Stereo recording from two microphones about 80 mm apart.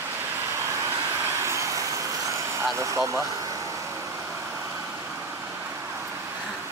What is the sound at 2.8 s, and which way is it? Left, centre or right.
Speech, right.